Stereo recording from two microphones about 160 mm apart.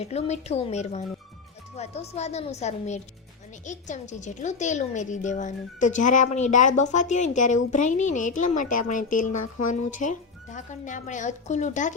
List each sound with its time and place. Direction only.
0.0 s a woman's voice: 40° left (ahead or behind)